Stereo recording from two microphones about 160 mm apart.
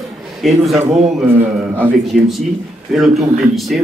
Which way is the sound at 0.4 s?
Centre (ahead or behind).